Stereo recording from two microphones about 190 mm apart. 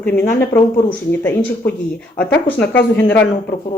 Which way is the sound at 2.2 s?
10° left (ahead or behind).